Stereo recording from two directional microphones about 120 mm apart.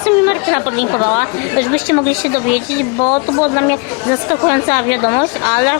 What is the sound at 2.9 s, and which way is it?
Speech, 40° left (ahead or behind).